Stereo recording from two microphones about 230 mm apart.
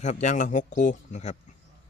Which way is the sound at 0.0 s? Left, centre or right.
Left.